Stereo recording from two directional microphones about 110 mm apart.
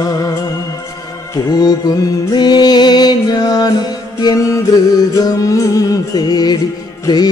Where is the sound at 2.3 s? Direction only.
40° left (ahead or behind).